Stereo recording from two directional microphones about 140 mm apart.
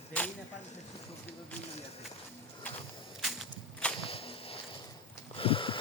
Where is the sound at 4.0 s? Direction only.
40° left (ahead or behind).